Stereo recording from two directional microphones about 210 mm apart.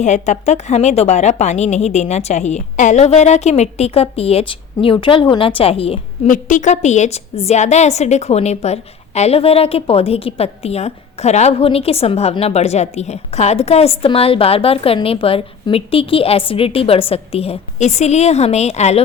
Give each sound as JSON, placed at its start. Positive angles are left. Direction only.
{"t": 0.0, "sound": "a woman's voice", "side_deg": 35}
{"t": 6.2, "sound": "a woman's voice", "side_deg": 40}